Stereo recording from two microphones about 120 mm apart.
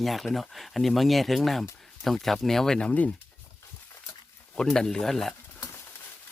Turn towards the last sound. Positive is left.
turn(degrees=5)  # may be behind; listen again after turning